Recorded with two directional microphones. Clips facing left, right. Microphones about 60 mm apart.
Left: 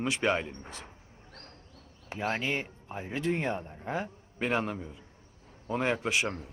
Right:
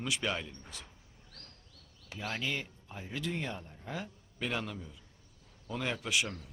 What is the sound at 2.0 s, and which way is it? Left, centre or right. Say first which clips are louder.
Speech: left 6 dB; left.